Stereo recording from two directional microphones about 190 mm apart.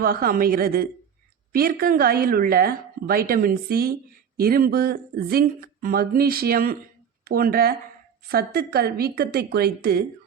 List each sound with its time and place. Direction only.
0.0 s a woman's voice: 50° right (ahead or behind)